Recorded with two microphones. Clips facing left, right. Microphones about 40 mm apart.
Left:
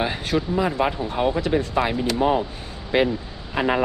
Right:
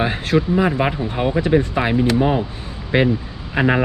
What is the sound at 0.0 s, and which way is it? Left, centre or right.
Speech, centre.